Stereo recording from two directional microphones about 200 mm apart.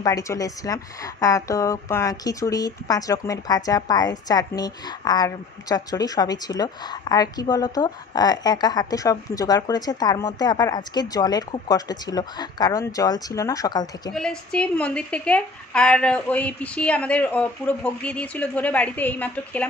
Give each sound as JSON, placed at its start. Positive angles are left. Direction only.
{"t": 0.0, "sound": "a woman's voice", "side_deg": 15}
{"t": 14.1, "sound": "a woman's voice", "side_deg": 5}